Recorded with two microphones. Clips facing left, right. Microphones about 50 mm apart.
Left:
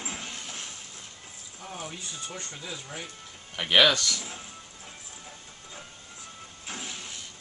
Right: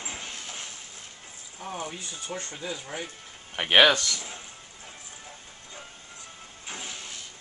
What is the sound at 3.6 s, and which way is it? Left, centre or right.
Speech, right.